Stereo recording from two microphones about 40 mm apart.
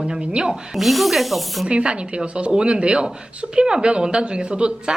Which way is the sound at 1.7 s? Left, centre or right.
Right.